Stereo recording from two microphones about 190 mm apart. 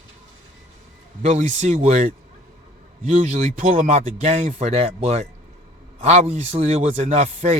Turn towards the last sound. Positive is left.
turn(degrees=-35)  # may be behind; listen again after turning